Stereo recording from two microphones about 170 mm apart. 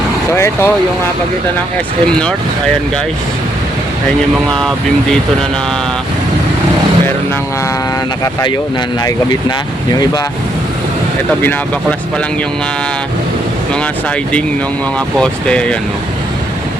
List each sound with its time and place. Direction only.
0.3 s speech: 15° left (ahead or behind)
8.2 s speech: 20° left (ahead or behind)
14.9 s speech: 5° left (ahead or behind)